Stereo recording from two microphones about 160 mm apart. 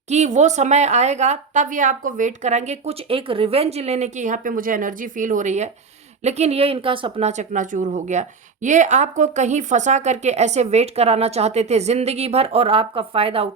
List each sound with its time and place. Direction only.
0.1 s a woman's voice: 45° right (ahead or behind)
7.3 s a woman's voice: 50° right (ahead or behind)